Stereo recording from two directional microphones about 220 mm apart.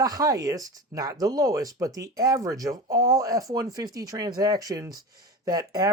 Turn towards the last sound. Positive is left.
turn(degrees=-15)  # may be behind; listen again after turning